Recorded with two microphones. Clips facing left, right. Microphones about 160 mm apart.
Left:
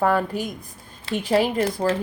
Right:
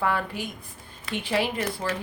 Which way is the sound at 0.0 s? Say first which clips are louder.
Left 6 dB; 40° left (ahead or behind).